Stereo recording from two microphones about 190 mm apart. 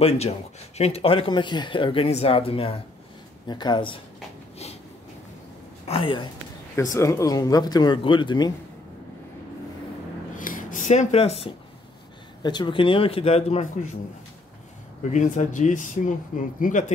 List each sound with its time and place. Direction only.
0.7 s speech: 30° left (ahead or behind)
5.9 s speech: 25° left (ahead or behind)
6.7 s speech: 15° left (ahead or behind)
10.3 s a sound: 45° left (ahead or behind)
12.4 s speech: 25° left (ahead or behind)
15.0 s speech: 40° left (ahead or behind)